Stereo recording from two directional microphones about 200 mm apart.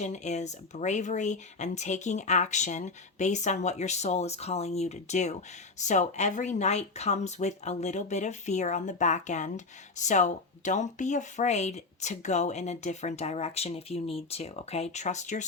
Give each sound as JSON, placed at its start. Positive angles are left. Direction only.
{"t": 0.0, "sound": "speech", "side_deg": 35}